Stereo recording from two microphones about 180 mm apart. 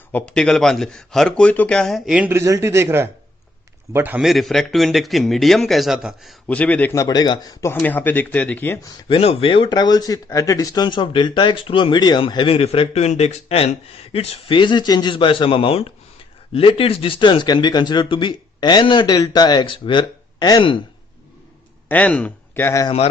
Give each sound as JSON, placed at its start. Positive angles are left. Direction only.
{"t": 0.1, "sound": "speech", "side_deg": 10}
{"t": 6.5, "sound": "a man's voice", "side_deg": 10}
{"t": 9.0, "sound": "speech", "side_deg": 30}
{"t": 21.8, "sound": "speech", "side_deg": 10}